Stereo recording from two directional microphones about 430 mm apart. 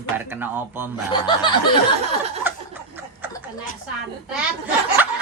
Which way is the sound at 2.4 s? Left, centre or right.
Centre.